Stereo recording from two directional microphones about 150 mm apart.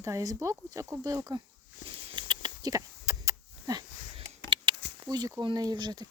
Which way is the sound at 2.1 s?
30° right (ahead or behind).